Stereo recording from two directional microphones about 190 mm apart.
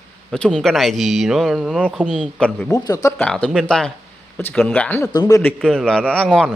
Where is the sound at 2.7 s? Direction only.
20° left (ahead or behind).